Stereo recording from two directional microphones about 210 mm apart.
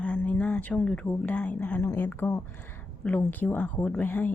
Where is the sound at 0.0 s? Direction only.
5° left (ahead or behind).